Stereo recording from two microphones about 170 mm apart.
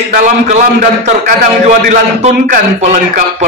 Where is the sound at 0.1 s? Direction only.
50° right (ahead or behind).